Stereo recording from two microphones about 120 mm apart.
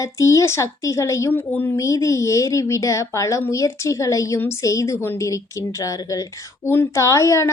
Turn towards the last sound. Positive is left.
turn(degrees=25)  # may be behind; listen again after turning